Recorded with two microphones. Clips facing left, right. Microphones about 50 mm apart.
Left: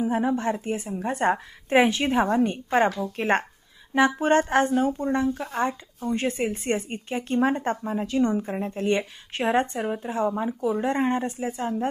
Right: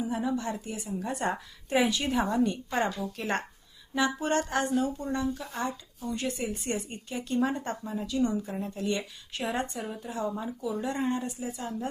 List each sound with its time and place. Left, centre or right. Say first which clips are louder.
0.0 s speech: left 6 dB; left